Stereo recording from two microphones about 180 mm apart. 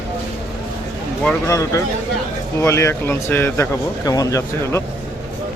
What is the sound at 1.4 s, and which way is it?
Speech, 15° left (ahead or behind).